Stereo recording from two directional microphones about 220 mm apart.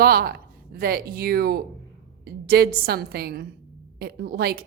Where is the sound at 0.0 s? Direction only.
45° right (ahead or behind).